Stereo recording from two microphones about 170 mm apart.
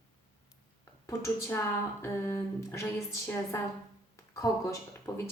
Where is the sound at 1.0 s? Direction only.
15° left (ahead or behind).